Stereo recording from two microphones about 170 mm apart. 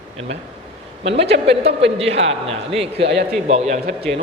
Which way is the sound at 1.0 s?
90° right.